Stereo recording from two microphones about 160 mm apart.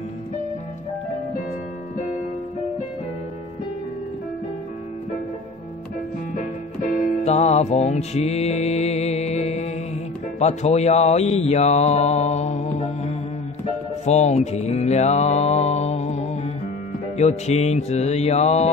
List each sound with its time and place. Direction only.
6.3 s music: 50° left (ahead or behind)
10.4 s speech: 45° left (ahead or behind)
14.0 s mantra: 45° left (ahead or behind)